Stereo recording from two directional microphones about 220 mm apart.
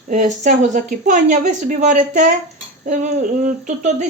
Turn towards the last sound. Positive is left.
turn(degrees=-35)  # may be behind; listen again after turning